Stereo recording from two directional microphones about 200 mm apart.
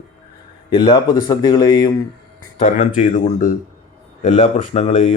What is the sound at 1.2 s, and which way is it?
Speech, 20° left (ahead or behind).